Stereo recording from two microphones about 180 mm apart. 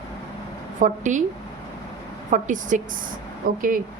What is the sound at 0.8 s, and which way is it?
Speech, 45° right (ahead or behind).